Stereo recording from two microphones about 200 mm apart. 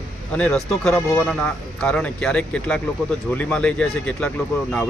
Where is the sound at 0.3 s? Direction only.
5° left (ahead or behind).